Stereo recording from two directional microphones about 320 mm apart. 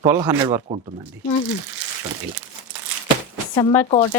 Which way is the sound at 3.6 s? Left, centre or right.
Centre.